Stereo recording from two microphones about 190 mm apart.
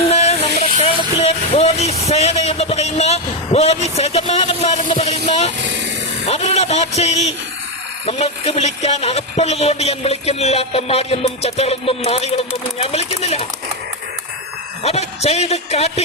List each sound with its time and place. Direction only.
0.0 s vehicle: 35° left (ahead or behind)
6.2 s speech: 35° left (ahead or behind)
14.8 s speech: 35° left (ahead or behind)